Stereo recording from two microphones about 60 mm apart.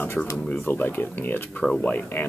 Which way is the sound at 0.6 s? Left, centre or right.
Left.